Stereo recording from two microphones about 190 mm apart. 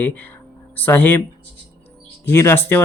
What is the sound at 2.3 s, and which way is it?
Speech, 10° left (ahead or behind).